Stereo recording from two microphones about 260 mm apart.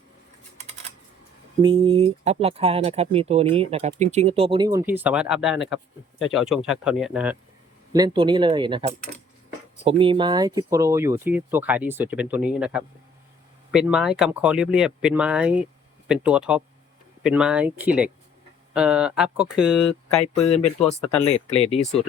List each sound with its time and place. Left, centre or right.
1.8 s speech: right; by 7.3 s centre
7.9 s speech: centre
9.8 s speech: centre
19.9 s speech: left